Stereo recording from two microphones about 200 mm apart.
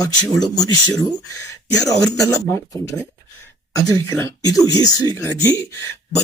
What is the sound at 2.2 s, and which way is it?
Speech, 15° left (ahead or behind).